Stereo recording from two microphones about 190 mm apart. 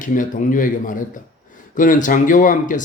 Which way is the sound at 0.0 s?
45° left (ahead or behind).